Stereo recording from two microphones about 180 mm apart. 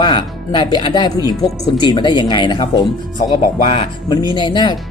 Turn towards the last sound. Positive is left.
turn(degrees=25)  # may be behind; listen again after turning